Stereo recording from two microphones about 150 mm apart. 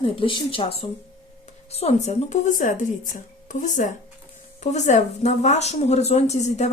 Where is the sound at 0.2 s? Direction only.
35° left (ahead or behind).